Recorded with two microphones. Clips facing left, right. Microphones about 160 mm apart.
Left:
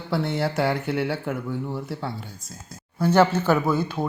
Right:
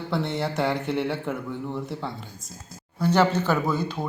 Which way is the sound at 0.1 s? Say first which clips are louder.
Left 3 dB; centre (ahead or behind).